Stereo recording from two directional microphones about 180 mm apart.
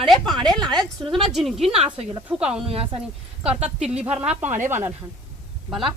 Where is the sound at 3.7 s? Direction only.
5° right (ahead or behind).